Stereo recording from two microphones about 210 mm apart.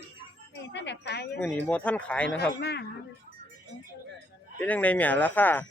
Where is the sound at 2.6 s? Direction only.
50° left (ahead or behind).